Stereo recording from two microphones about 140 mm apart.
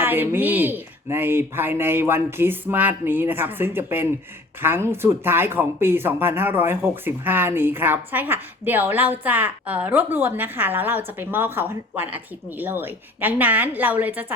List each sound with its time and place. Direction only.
0.0 s speech: 15° right (ahead or behind)